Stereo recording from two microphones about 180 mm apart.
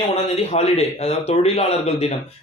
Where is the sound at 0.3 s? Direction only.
35° left (ahead or behind).